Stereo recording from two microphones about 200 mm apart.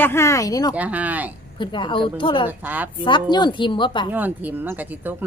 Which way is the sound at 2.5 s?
10° right (ahead or behind).